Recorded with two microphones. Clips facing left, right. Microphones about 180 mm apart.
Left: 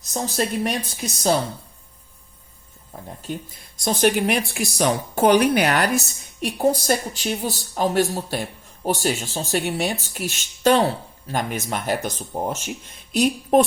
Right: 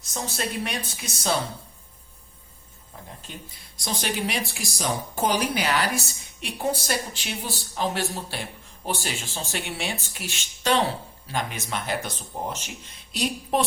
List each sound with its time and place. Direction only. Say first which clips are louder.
0.1 s speech: left 6 dB; 40° left (ahead or behind)
3.3 s speech: left 10 dB; 45° left (ahead or behind)
6.4 s speech: left 7 dB; 40° left (ahead or behind)